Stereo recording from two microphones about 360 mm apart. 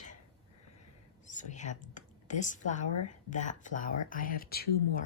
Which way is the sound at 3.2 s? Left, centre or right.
Left.